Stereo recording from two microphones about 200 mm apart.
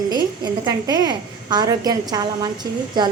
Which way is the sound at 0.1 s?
20° right (ahead or behind).